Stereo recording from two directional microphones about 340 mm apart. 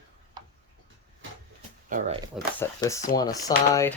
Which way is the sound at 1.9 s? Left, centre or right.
Centre.